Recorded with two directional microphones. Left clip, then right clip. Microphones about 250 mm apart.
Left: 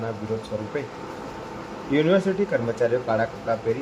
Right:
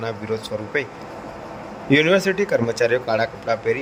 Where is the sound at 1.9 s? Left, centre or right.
Right.